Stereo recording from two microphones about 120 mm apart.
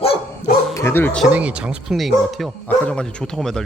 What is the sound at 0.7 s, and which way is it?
Bow-wow, 25° left (ahead or behind).